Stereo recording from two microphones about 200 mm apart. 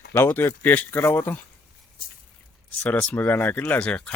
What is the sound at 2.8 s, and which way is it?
Speech, 10° left (ahead or behind).